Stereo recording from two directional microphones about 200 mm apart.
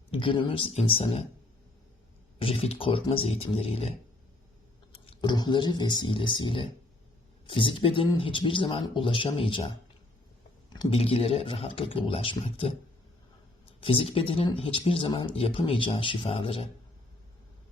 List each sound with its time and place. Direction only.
0.2 s speech: 25° left (ahead or behind)
2.4 s speech: 30° left (ahead or behind)